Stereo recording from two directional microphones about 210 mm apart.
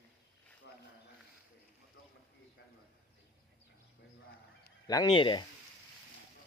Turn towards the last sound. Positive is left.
turn(degrees=25)  # may be behind; listen again after turning